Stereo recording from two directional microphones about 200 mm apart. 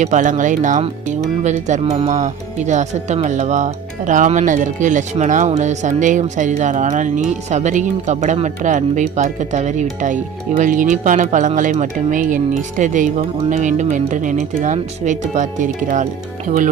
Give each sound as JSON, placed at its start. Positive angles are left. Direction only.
{"t": 0.0, "sound": "speech", "side_deg": -40}